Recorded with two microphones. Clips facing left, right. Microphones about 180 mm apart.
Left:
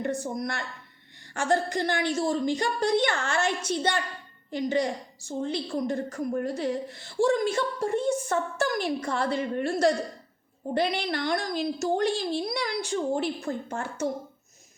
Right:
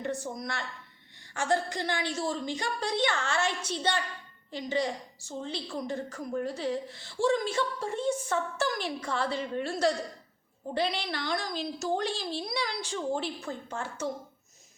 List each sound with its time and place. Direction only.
0.0 s a woman's voice: 50° left (ahead or behind)